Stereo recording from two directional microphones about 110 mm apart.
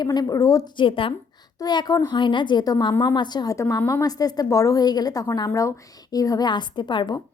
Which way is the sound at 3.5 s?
25° left (ahead or behind).